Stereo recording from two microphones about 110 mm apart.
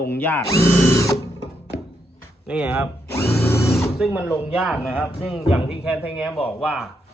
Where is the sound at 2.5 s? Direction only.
15° right (ahead or behind).